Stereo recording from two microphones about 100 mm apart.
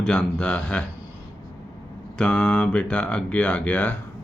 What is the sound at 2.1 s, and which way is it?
Speech, 10° left (ahead or behind).